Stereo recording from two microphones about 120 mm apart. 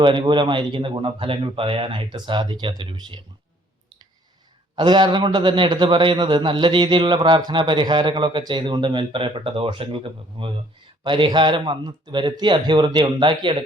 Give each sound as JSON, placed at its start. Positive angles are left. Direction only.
{"t": 0.0, "sound": "a man's voice", "side_deg": -40}
{"t": 4.7, "sound": "a man's voice", "side_deg": -40}